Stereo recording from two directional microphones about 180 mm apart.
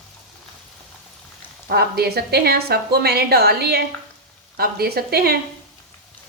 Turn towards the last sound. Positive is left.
turn(degrees=-60)  # may be behind; listen again after turning